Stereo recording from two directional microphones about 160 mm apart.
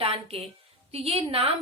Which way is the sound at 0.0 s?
35° right (ahead or behind).